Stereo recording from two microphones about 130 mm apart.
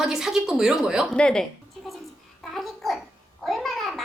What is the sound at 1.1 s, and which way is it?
Speech, 5° left (ahead or behind).